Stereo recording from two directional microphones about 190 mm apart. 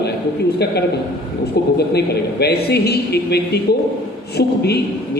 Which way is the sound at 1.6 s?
55° left (ahead or behind).